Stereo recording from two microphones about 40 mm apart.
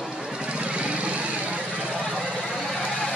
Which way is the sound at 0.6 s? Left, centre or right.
Right.